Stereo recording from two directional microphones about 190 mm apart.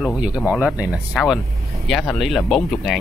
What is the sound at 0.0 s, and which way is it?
Speech, 5° right (ahead or behind).